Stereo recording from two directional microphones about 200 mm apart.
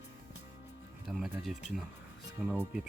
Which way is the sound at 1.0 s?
Centre (ahead or behind).